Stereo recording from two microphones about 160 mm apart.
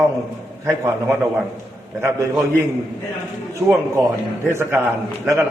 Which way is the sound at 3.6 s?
15° right (ahead or behind).